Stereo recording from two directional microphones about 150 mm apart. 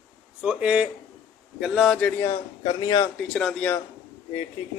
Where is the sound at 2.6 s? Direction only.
35° left (ahead or behind).